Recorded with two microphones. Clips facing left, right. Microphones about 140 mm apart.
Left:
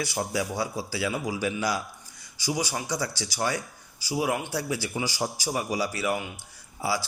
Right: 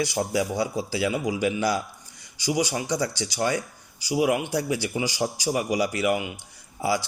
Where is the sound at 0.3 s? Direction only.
25° right (ahead or behind).